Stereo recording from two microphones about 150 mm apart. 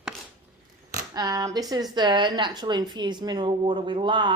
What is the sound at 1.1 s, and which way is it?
Speech, 25° right (ahead or behind).